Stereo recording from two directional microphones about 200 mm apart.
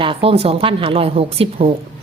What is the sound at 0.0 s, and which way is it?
Speech, 25° right (ahead or behind).